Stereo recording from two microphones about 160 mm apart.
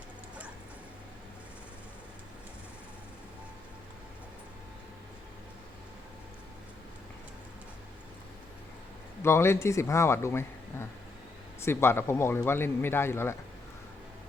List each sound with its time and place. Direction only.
9.2 s speech: 15° left (ahead or behind)